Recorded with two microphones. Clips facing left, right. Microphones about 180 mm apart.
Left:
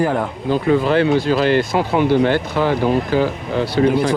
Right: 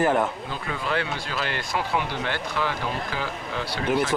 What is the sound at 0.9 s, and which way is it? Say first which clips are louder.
Speech: left 13 dB; 30° left (ahead or behind).